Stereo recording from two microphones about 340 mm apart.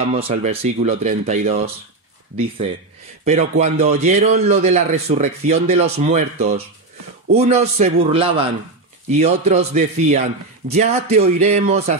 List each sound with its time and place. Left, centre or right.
0.1 s a man's voice: centre
3.3 s a man's voice: centre